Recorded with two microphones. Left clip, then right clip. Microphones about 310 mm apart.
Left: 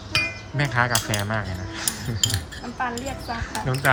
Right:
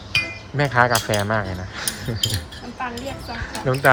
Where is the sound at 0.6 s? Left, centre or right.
Centre.